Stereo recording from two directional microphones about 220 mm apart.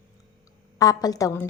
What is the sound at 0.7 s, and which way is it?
Speech, 15° left (ahead or behind).